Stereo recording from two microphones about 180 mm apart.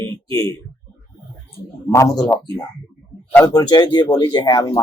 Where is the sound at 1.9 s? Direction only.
20° left (ahead or behind).